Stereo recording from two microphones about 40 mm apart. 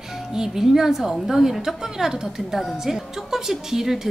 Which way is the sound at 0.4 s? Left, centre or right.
Centre.